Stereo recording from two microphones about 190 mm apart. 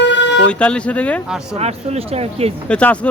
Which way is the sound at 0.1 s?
70° left (ahead or behind).